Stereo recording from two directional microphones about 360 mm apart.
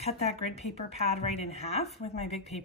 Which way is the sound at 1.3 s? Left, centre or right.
Centre.